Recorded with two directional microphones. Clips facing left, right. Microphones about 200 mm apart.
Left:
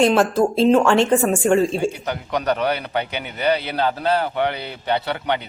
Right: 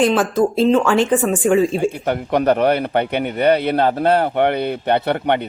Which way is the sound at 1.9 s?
55° right (ahead or behind).